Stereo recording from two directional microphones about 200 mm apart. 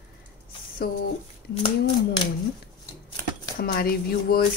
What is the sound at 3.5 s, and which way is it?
Speech, 45° left (ahead or behind).